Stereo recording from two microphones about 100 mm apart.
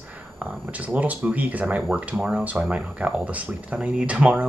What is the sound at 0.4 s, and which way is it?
Speech, 15° right (ahead or behind).